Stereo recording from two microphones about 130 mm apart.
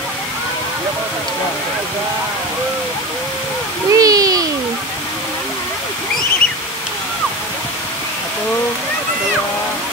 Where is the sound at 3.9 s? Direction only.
30° right (ahead or behind).